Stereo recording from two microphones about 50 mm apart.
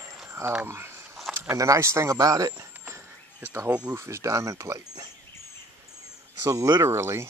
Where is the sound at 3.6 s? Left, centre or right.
Right.